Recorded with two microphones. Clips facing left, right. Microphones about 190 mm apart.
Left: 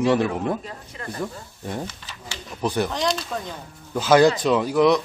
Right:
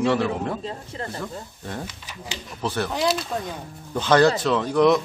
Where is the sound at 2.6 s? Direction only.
15° left (ahead or behind).